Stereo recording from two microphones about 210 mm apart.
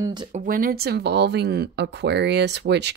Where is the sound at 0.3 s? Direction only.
40° right (ahead or behind).